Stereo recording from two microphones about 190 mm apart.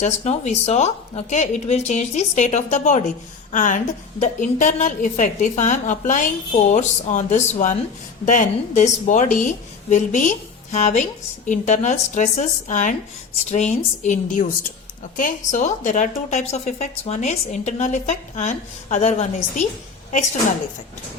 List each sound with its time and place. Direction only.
0.0 s a woman's voice: 35° left (ahead or behind)